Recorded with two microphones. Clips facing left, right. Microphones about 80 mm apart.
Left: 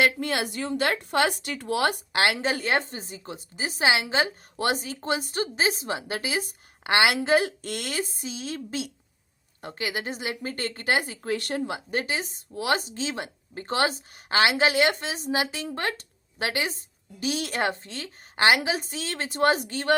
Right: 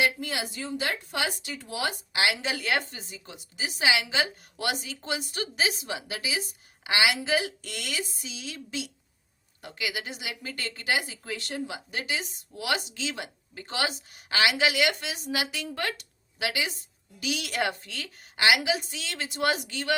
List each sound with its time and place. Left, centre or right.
0.0 s speech: left